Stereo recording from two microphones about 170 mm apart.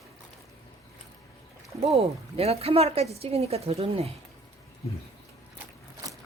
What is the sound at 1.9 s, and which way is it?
Speech, 35° right (ahead or behind).